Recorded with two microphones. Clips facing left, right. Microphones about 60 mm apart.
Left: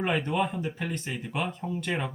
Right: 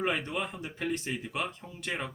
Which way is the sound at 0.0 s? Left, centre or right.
Centre.